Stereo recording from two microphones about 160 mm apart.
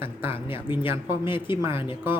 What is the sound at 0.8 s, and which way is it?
Speech, 30° left (ahead or behind).